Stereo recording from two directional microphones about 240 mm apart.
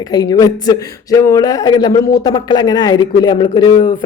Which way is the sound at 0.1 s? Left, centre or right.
Centre.